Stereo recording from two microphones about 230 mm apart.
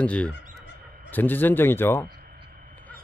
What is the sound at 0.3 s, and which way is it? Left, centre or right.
Fowl, left.